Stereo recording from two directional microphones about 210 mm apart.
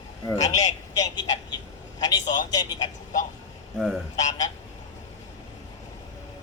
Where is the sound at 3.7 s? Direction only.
Centre (ahead or behind).